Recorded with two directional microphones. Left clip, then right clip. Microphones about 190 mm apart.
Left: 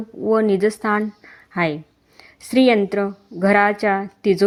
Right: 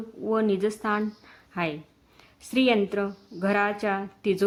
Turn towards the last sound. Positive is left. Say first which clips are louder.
# left 8 dB
turn(degrees=30)  # may be behind; listen again after turning